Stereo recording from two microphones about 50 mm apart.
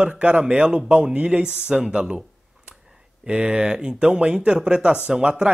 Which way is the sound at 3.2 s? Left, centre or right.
Centre.